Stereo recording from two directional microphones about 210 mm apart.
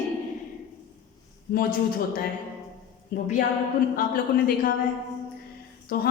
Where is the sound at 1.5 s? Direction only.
45° left (ahead or behind).